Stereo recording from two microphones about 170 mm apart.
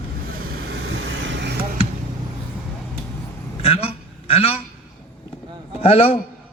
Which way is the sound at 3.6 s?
35° left (ahead or behind).